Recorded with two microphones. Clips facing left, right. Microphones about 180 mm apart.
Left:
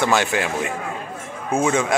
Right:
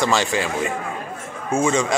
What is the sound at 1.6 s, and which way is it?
Speech, 5° left (ahead or behind).